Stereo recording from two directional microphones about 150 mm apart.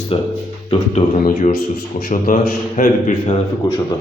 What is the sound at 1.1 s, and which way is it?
Speech, 80° left.